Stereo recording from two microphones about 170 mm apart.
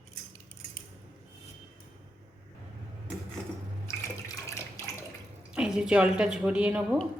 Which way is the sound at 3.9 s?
15° left (ahead or behind).